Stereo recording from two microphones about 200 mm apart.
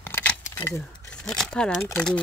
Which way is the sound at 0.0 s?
10° left (ahead or behind).